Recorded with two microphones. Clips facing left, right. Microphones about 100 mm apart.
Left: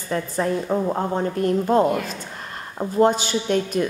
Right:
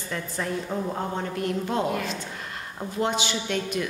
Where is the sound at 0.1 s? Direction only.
40° left (ahead or behind).